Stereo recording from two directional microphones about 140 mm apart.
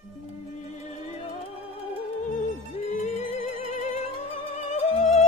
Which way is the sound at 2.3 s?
60° left (ahead or behind).